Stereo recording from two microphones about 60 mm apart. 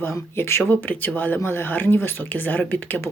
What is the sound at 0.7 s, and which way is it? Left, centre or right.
Speech, left.